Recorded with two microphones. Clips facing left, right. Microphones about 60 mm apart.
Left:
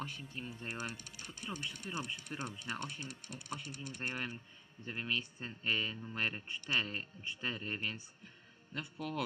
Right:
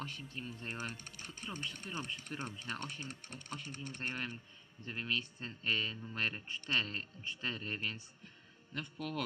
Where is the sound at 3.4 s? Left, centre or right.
Centre.